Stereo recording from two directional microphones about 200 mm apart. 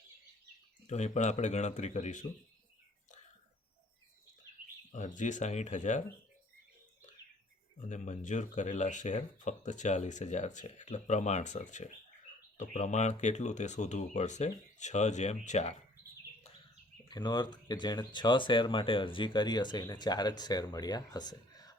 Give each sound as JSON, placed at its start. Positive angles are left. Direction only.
{"t": 0.9, "sound": "speech", "side_deg": 35}
{"t": 4.9, "sound": "speech", "side_deg": 35}
{"t": 7.8, "sound": "speech", "side_deg": 35}
{"t": 17.1, "sound": "speech", "side_deg": 20}